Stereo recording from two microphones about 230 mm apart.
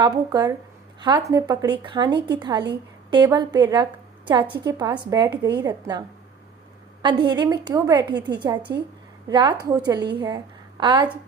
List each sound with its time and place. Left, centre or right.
0.3 s a woman's voice: centre
7.0 s a woman's voice: centre